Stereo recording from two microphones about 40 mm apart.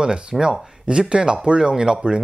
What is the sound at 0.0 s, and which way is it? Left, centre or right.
Speech, centre.